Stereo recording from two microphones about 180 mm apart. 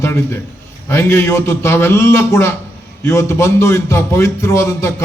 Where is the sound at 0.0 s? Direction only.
15° left (ahead or behind).